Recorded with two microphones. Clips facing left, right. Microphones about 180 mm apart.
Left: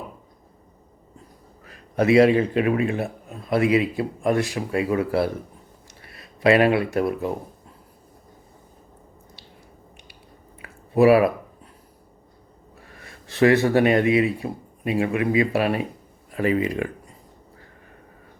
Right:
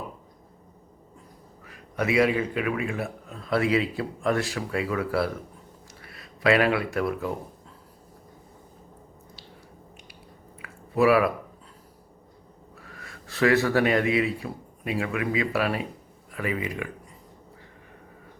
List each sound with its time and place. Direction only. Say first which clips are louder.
1.6 s a man's voice: left 7 dB; 35° left (ahead or behind)
10.6 s a sound: left 5 dB; 25° left (ahead or behind)
12.8 s speech: even; 25° left (ahead or behind)